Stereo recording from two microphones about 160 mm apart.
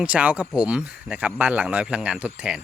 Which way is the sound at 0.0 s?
10° right (ahead or behind).